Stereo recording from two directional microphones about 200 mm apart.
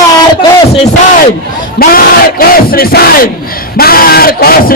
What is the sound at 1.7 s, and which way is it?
Battle cry, 45° left (ahead or behind).